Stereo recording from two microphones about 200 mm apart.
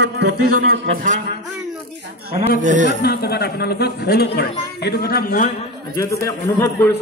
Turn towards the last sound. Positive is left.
turn(degrees=15)  # may be behind; listen again after turning